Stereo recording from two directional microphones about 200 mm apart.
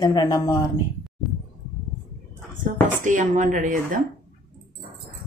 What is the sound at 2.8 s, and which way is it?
Speech, 40° right (ahead or behind).